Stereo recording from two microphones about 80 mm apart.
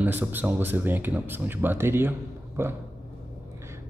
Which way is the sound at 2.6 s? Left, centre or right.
Right.